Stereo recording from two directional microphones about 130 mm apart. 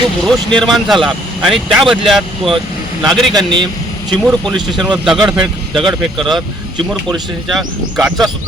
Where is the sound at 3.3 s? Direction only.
35° right (ahead or behind).